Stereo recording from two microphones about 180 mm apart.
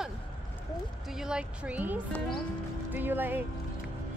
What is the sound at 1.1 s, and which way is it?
Speech, 5° right (ahead or behind).